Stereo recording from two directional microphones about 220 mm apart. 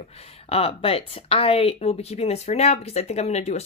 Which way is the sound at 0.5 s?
25° left (ahead or behind).